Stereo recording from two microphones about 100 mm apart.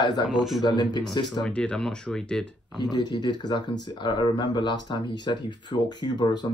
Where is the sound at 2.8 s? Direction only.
45° left (ahead or behind).